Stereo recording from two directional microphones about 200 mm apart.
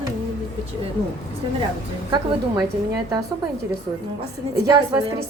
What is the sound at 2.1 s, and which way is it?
A woman's voice, 20° right (ahead or behind).